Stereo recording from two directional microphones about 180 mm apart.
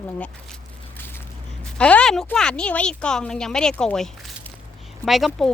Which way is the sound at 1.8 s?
5° left (ahead or behind).